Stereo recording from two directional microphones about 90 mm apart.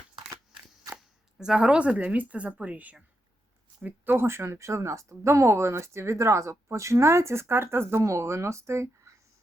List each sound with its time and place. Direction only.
1.4 s a woman's voice: 10° right (ahead or behind); by 9.1 s 30° right (ahead or behind)